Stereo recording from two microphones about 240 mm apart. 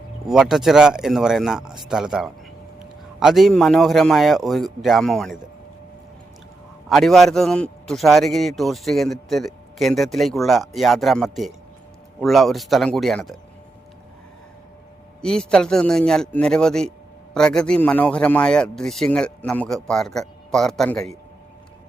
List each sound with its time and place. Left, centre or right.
0.3 s a man's voice: centre
6.8 s a man's voice: centre
15.2 s a man's voice: centre